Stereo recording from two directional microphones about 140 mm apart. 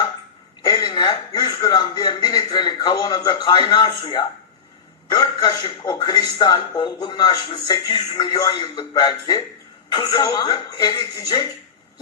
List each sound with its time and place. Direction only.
0.6 s a man's voice: 30° left (ahead or behind)